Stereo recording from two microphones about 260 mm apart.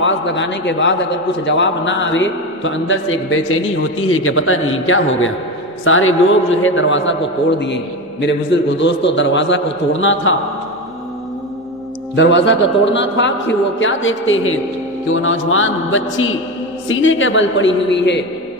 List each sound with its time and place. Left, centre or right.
0.0 s a man's voice: left
12.2 s a man's voice: left